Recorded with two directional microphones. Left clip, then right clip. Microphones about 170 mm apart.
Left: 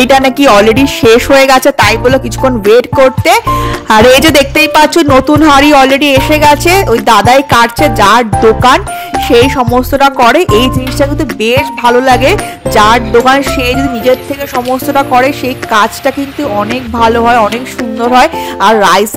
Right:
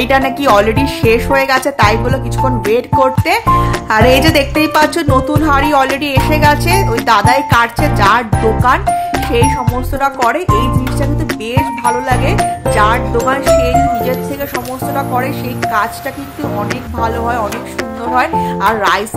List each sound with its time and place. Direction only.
0.0 s music: 50° left (ahead or behind)
3.9 s music: 50° left (ahead or behind)
9.3 s speech: 55° left (ahead or behind)
11.4 s speech: 55° left (ahead or behind)
15.0 s music: 55° left (ahead or behind)
17.0 s music: 55° left (ahead or behind)